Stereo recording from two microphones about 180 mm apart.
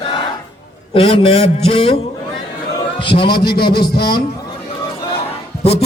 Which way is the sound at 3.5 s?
60° left (ahead or behind).